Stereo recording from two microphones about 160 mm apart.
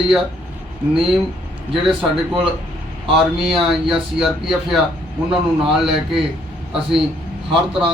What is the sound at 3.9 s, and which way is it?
A man's voice, 5° right (ahead or behind).